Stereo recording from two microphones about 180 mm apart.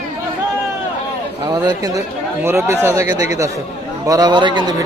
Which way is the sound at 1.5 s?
20° right (ahead or behind).